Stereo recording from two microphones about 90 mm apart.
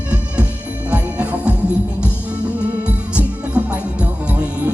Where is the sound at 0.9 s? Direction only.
15° right (ahead or behind).